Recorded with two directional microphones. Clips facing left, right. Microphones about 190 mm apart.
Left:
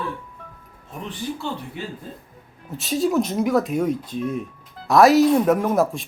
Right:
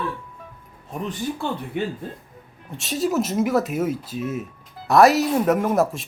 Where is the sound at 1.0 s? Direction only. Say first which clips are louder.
Right 2 dB; 55° right (ahead or behind).